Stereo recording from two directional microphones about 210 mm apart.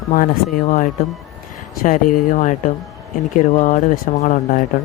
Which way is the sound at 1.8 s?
35° left (ahead or behind).